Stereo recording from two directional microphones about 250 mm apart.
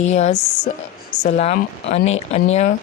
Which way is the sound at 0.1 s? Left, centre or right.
Left.